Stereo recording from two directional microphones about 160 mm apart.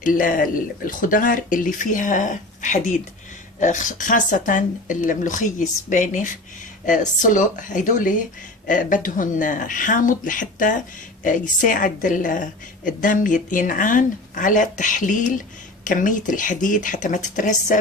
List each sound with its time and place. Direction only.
0.0 s a woman's voice: 60° left (ahead or behind)